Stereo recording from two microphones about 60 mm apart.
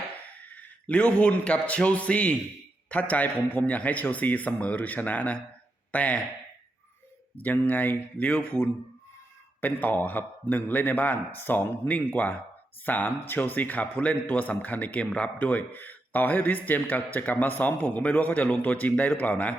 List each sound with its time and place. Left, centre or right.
0.3 s a man's voice: left
7.4 s a man's voice: left